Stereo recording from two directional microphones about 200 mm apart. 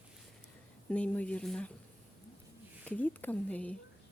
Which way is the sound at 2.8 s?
10° left (ahead or behind).